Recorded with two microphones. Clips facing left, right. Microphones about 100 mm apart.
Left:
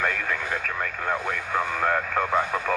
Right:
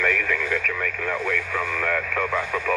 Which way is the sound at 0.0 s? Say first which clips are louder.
Right 3 dB; 35° left (ahead or behind).